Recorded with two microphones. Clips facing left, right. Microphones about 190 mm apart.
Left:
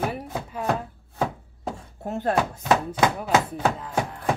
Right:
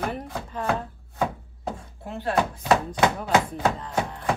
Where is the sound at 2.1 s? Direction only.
45° left (ahead or behind).